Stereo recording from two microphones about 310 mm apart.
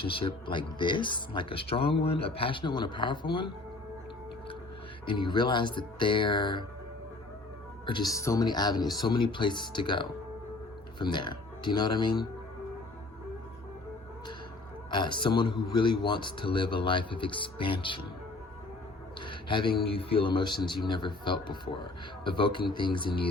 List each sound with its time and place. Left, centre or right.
0.0 s a man's voice: centre
5.0 s a man's voice: centre
7.9 s a man's voice: centre
14.8 s a man's voice: centre
19.2 s a sound: centre
19.8 s a man's voice: centre